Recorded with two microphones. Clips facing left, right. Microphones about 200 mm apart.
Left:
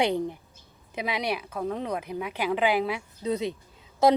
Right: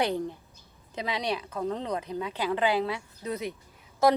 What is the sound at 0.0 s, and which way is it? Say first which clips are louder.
A woman's voice: left 3 dB; 15° left (ahead or behind).